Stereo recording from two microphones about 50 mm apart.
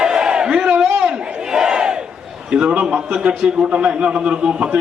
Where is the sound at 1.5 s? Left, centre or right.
Centre.